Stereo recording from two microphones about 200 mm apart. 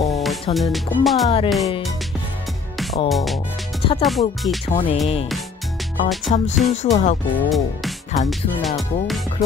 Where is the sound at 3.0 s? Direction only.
Centre (ahead or behind).